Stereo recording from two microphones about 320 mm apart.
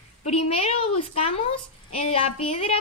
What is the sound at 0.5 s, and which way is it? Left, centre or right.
A woman's voice, centre.